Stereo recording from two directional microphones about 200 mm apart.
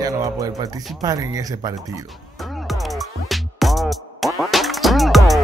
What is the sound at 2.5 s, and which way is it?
Music, centre (ahead or behind).